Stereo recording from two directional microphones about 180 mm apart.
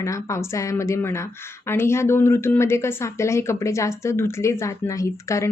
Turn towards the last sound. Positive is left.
turn(degrees=15)  # may be behind; listen again after turning